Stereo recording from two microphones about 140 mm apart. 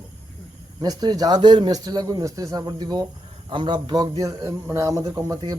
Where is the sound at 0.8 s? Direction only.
30° right (ahead or behind).